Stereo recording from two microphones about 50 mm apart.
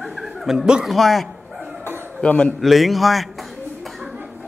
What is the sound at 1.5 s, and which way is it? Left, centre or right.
Dog, right.